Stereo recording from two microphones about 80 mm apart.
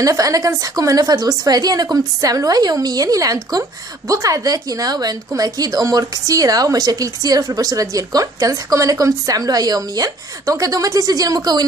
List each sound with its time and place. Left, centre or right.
0.0 s a woman's voice: right